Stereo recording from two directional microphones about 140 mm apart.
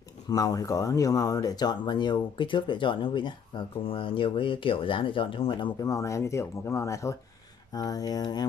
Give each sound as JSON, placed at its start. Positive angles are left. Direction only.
{"t": 0.3, "sound": "speech", "side_deg": 25}